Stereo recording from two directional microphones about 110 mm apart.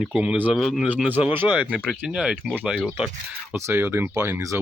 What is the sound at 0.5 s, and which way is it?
Speech, centre (ahead or behind).